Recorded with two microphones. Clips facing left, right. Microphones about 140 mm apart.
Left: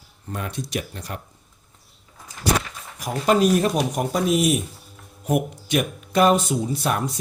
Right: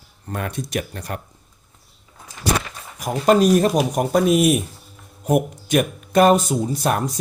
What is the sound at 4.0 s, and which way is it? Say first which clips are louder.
Speech: right 4 dB; 45° right (ahead or behind).